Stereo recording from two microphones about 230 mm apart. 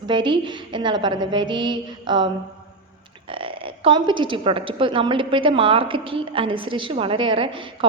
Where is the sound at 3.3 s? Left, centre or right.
Right.